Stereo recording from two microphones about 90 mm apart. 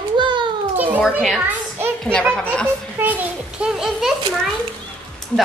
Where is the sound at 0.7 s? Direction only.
20° right (ahead or behind).